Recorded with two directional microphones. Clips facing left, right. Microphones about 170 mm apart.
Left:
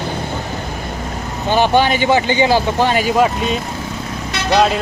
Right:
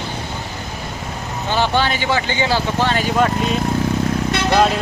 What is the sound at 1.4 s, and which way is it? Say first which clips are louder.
Speech: left 5 dB; 15° left (ahead or behind).